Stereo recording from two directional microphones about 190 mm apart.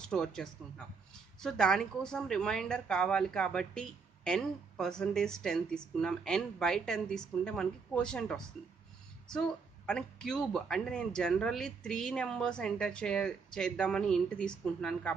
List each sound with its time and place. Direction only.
0.0 s a woman's voice: 5° left (ahead or behind)